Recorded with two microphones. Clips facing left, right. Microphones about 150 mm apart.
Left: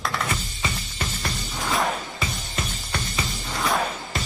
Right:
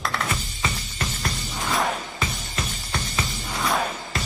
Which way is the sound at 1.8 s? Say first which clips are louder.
Right 1 dB; centre (ahead or behind).